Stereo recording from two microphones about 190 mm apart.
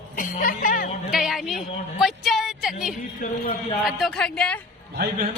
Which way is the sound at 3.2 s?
40° left (ahead or behind).